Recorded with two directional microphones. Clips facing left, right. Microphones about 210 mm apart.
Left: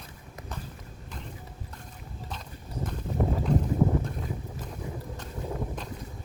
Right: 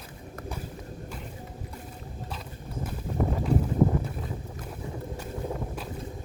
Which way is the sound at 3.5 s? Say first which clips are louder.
Right 1 dB; 10° right (ahead or behind).